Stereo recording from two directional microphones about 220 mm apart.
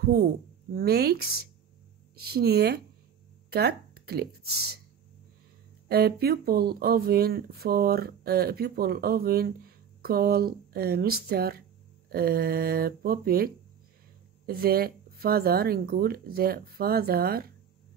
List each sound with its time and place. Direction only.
0.0 s speech: 45° right (ahead or behind)
5.9 s speech: 45° right (ahead or behind)